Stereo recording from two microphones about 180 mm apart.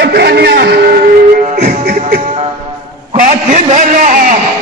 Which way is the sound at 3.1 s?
45° right (ahead or behind).